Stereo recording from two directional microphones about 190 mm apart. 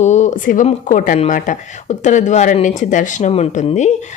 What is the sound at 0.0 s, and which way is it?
Speech, 40° left (ahead or behind).